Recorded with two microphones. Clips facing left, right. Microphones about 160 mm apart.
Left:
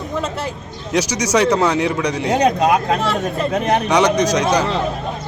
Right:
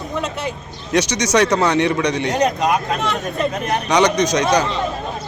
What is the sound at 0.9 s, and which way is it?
A man's voice, 10° left (ahead or behind).